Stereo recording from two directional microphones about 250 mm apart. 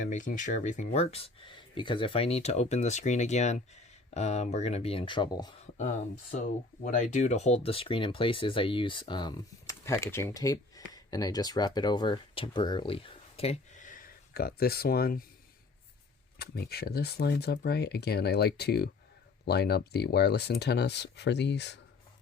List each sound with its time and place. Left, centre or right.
0.0 s speech: left
5.7 s speech: left
16.4 s speech: left